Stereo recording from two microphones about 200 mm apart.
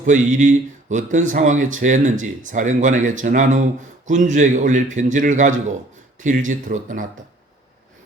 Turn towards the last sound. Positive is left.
turn(degrees=-40)  # may be behind; listen again after turning